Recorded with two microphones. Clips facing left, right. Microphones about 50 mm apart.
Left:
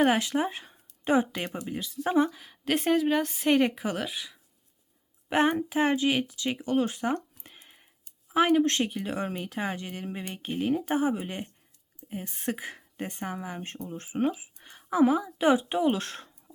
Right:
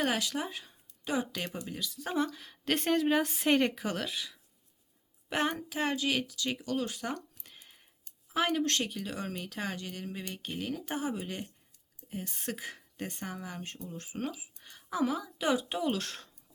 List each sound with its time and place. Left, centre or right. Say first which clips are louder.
0.0 s speech: left 7 dB; left
2.3 s a woman's voice: left 4 dB; centre
13.7 s speech: left 5 dB; left